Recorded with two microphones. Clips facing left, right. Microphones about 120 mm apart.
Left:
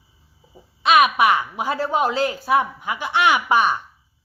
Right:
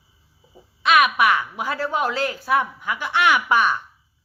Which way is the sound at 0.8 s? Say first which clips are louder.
Left 2 dB; 25° left (ahead or behind).